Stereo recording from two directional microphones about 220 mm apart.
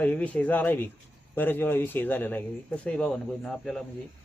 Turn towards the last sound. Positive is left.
turn(degrees=0)  # may be behind; listen again after turning